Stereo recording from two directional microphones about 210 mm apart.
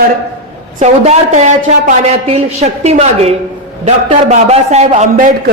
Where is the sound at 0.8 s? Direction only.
30° right (ahead or behind).